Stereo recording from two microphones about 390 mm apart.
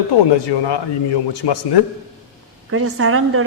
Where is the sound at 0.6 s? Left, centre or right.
Left.